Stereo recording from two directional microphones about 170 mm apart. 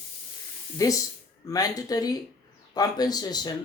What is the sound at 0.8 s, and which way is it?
A man's voice, 20° left (ahead or behind).